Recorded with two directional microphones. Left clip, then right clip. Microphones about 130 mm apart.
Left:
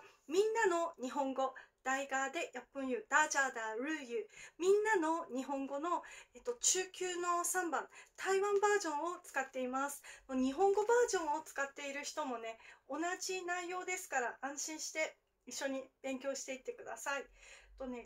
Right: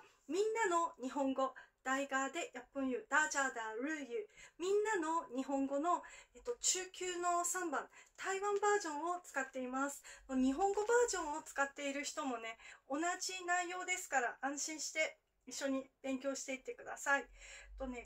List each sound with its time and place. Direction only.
0.3 s speech: 30° left (ahead or behind)